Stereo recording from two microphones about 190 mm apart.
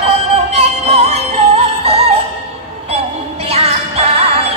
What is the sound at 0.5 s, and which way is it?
Synthetic singing, 30° right (ahead or behind).